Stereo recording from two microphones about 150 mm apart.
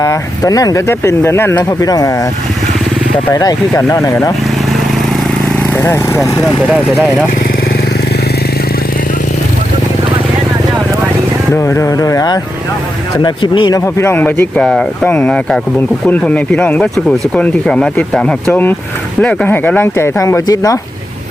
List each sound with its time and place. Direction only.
0.0 s speech: 25° left (ahead or behind)
3.3 s speech: 20° left (ahead or behind)
5.7 s speech: 20° left (ahead or behind)
11.5 s speech: 20° left (ahead or behind)